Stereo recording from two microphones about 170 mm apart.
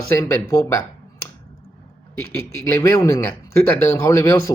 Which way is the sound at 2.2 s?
15° left (ahead or behind).